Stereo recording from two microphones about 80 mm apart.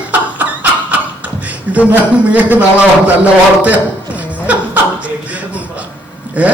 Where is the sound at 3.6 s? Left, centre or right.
Centre.